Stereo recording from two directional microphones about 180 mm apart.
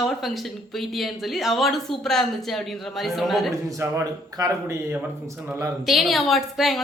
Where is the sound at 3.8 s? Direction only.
15° right (ahead or behind).